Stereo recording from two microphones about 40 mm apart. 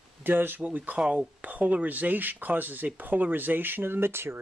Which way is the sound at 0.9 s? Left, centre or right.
Right.